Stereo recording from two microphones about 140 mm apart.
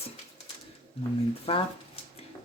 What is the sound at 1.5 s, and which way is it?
Speech, 45° left (ahead or behind).